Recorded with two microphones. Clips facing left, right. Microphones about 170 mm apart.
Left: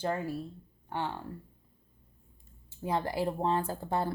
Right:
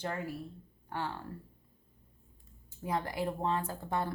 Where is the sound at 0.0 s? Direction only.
30° left (ahead or behind).